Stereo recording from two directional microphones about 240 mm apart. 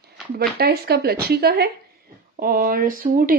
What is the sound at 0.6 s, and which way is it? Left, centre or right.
Speech, right.